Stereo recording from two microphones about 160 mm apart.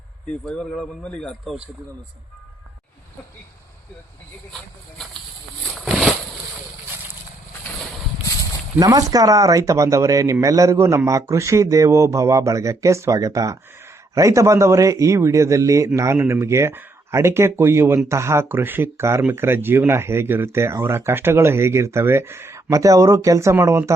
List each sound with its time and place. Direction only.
0.3 s speech: 5° left (ahead or behind)
5.6 s a sound: centre (ahead or behind)
8.8 s speech: 20° right (ahead or behind)